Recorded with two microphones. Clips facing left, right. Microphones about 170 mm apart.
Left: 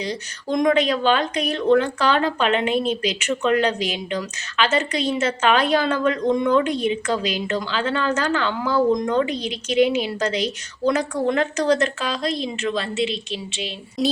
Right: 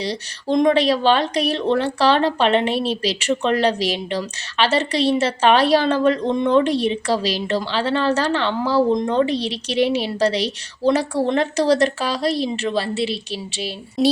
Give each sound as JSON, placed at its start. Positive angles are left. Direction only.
{"t": 0.0, "sound": "speech", "side_deg": -30}